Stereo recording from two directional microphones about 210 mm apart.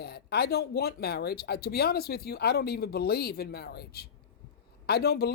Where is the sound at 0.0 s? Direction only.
50° left (ahead or behind).